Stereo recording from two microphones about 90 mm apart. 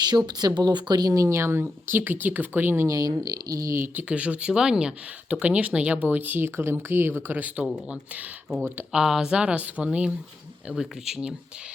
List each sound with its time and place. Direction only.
0.3 s speech: 50° right (ahead or behind); by 2.8 s 25° right (ahead or behind)
2.8 s speech: 40° right (ahead or behind)
3.9 s speech: 15° right (ahead or behind)
8.9 s speech: 5° right (ahead or behind)